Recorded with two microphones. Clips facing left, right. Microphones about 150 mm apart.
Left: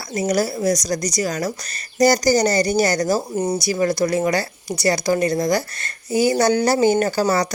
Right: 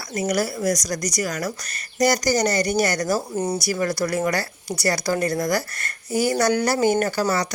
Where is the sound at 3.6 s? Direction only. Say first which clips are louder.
Left 4 dB; 20° left (ahead or behind).